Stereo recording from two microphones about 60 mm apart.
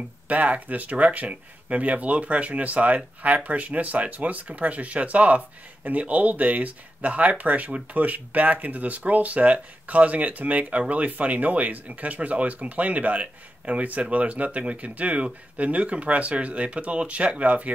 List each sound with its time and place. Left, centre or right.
0.3 s speech: right